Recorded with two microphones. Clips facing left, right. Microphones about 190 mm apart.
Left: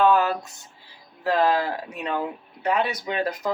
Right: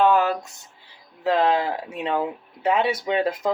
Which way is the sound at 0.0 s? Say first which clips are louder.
Right 1 dB; 20° right (ahead or behind).